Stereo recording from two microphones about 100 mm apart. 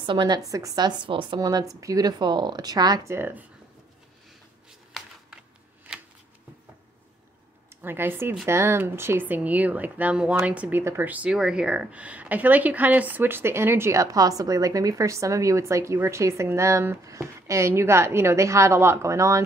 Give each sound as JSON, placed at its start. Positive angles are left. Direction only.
{"t": 0.0, "sound": "a woman's voice", "side_deg": -50}
{"t": 0.4, "sound": "a woman's voice", "side_deg": -35}
{"t": 1.4, "sound": "speech", "side_deg": -35}
{"t": 3.1, "sound": "speech", "side_deg": -20}
{"t": 4.6, "sound": "a sound", "side_deg": -5}
{"t": 5.9, "sound": "shuffling cards", "side_deg": -5}
{"t": 7.7, "sound": "a woman's voice", "side_deg": -20}
{"t": 10.8, "sound": "speech", "side_deg": -25}
{"t": 11.1, "sound": "speech", "side_deg": -10}